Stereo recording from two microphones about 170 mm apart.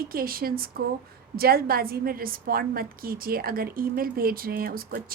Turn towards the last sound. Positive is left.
turn(degrees=-60)  # may be behind; listen again after turning